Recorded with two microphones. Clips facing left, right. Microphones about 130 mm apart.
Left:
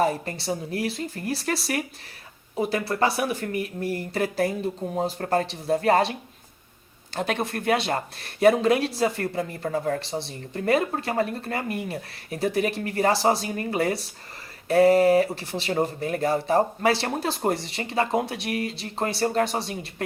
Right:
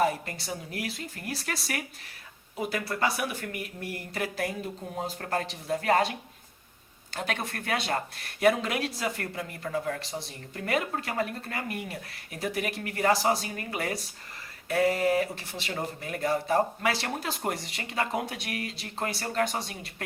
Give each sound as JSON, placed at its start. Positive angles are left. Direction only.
{"t": 0.0, "sound": "speech", "side_deg": 30}